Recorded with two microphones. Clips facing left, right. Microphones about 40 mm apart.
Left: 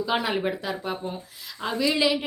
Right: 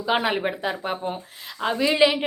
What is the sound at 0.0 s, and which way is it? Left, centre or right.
A woman's voice, right.